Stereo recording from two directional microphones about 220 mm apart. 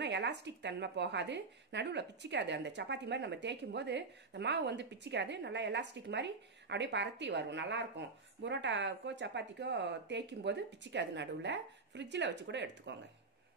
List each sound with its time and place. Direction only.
0.0 s a woman's voice: 50° right (ahead or behind)